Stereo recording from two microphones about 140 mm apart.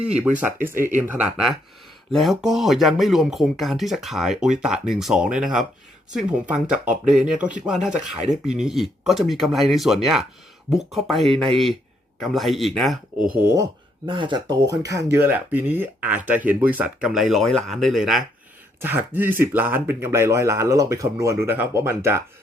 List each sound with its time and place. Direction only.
0.2 s speech: 10° right (ahead or behind)
14.1 s speech: 35° right (ahead or behind); by 18.2 s centre (ahead or behind)
18.8 s speech: 15° right (ahead or behind)